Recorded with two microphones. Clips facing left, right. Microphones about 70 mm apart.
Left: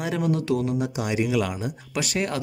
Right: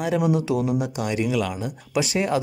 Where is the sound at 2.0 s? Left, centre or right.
Centre.